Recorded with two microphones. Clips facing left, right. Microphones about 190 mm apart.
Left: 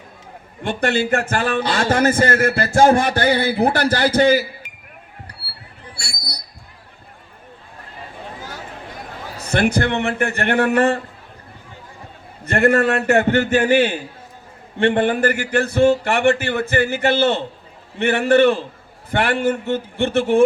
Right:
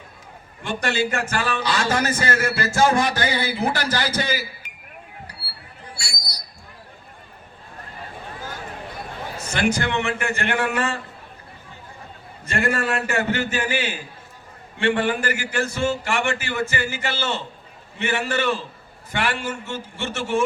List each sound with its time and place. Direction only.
0.6 s a man's voice: 55° left (ahead or behind)
6.0 s a sound: 60° left (ahead or behind)
9.4 s a man's voice: 60° left (ahead or behind)
12.5 s a man's voice: 60° left (ahead or behind)